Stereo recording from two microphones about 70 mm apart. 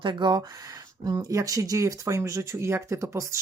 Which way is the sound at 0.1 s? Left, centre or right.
Right.